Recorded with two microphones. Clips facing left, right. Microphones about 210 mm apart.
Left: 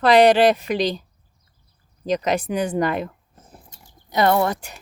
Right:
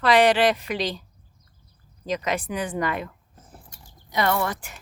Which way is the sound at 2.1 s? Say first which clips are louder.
Left 5 dB; 40° left (ahead or behind).